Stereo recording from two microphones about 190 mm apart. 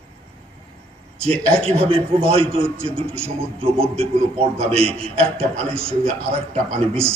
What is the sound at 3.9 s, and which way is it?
Speech, 30° right (ahead or behind).